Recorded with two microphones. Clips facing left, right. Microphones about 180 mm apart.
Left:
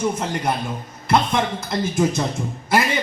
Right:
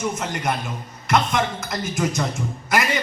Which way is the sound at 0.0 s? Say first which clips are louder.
Left 3 dB; 30° left (ahead or behind).